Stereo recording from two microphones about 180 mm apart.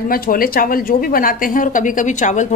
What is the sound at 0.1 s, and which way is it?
A woman's voice, 55° left (ahead or behind).